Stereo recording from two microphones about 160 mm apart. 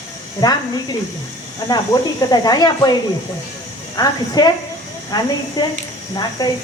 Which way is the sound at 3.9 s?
25° left (ahead or behind).